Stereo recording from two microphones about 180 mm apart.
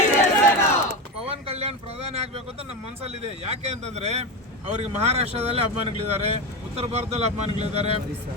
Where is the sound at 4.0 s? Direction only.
35° right (ahead or behind).